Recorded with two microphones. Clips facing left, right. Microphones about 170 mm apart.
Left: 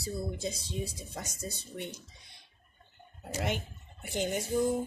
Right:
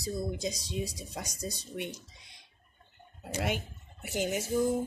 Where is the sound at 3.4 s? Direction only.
5° right (ahead or behind).